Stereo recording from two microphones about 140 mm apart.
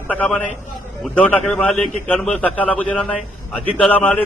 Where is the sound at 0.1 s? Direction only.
10° left (ahead or behind).